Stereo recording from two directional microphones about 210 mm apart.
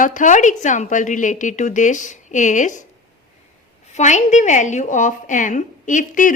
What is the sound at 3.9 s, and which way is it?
A woman's voice, 35° left (ahead or behind).